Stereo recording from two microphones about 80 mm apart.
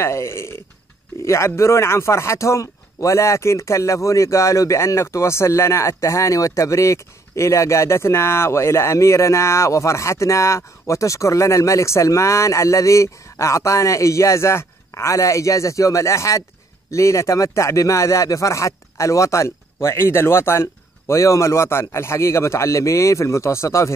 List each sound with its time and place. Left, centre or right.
0.0 s speech: left